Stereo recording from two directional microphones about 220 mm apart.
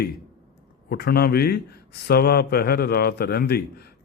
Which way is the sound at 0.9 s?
45° left (ahead or behind).